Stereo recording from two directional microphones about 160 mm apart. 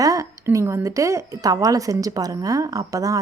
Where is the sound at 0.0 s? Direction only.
20° right (ahead or behind).